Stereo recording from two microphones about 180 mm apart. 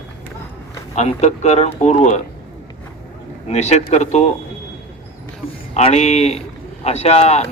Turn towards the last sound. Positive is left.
turn(degrees=35)  # may be behind; listen again after turning